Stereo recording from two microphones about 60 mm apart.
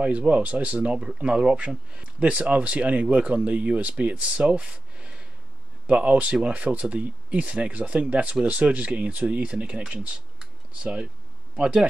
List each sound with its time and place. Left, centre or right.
0.0 s speech: right